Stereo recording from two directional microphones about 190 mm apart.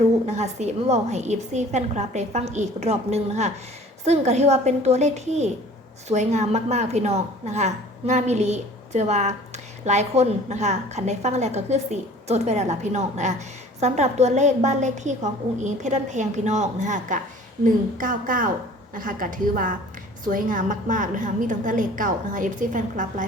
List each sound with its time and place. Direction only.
0.3 s a woman's voice: 35° right (ahead or behind)